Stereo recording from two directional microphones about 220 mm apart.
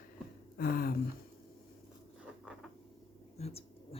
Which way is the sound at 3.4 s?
25° left (ahead or behind).